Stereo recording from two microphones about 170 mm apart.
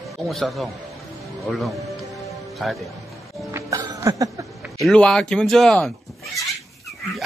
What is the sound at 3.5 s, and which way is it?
Music, 20° right (ahead or behind).